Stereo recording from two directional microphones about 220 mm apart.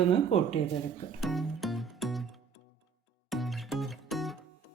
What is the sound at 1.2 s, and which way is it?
Music, centre (ahead or behind).